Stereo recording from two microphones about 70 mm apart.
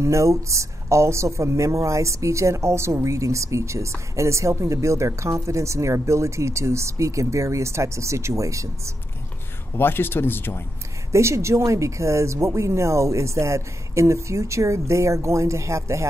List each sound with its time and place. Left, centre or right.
0.0 s speech: right
9.8 s speech: left
11.1 s speech: right